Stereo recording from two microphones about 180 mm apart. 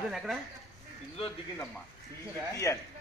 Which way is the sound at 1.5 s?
5° left (ahead or behind).